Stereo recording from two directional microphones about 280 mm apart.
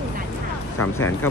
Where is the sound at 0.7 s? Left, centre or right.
Left.